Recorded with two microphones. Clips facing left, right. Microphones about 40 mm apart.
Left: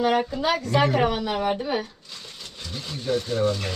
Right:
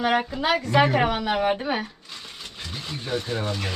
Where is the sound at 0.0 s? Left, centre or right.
Centre.